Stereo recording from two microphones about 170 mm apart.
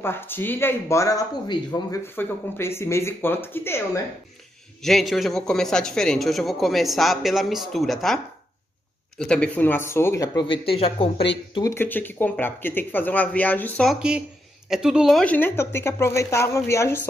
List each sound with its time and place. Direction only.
0.0 s a woman's voice: 10° left (ahead or behind)
4.8 s a man's voice: centre (ahead or behind)
9.2 s speech: 5° left (ahead or behind); by 11.2 s 35° left (ahead or behind)
11.7 s a woman's voice: 10° left (ahead or behind)
14.7 s a woman's voice: 5° right (ahead or behind); by 17.1 s 15° left (ahead or behind)